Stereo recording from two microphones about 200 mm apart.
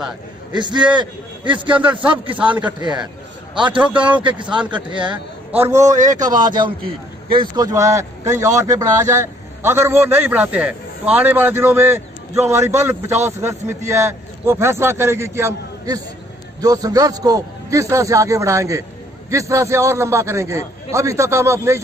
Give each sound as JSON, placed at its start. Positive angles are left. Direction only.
{"t": 0.5, "sound": "speech", "side_deg": -20}
{"t": 4.2, "sound": "speech", "side_deg": -25}
{"t": 5.5, "sound": "a man's voice", "side_deg": -10}
{"t": 5.9, "sound": "speech", "side_deg": -40}
{"t": 6.1, "sound": "a man's voice", "side_deg": -20}